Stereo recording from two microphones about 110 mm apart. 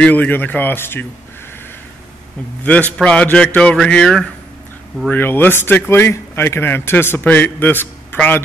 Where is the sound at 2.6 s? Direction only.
10° left (ahead or behind).